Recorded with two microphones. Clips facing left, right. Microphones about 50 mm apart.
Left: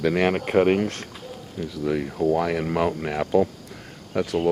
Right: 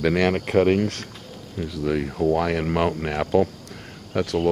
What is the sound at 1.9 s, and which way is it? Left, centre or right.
Speech, centre.